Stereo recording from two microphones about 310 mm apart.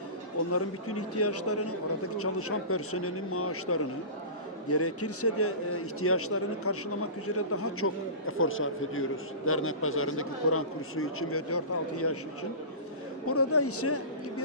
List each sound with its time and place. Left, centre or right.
0.5 s speech: left